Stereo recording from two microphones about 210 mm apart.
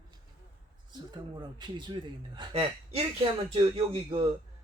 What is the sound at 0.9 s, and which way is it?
Speech, 20° right (ahead or behind).